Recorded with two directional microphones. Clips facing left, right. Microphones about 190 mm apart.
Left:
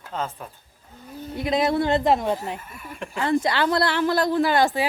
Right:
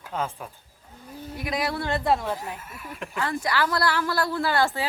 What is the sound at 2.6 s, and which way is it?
Speech, centre (ahead or behind).